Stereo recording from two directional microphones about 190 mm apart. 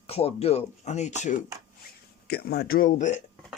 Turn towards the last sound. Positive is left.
turn(degrees=40)  # may be behind; listen again after turning